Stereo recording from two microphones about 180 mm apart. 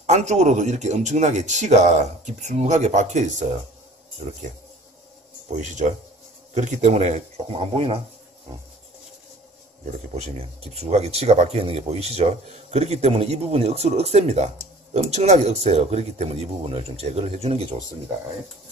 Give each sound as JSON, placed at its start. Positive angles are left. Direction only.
{"t": 0.0, "sound": "speech", "side_deg": -40}
{"t": 5.6, "sound": "speech", "side_deg": -40}
{"t": 10.1, "sound": "speech", "side_deg": -35}